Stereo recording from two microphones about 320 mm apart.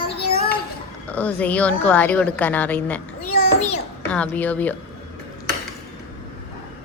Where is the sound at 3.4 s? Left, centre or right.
Left.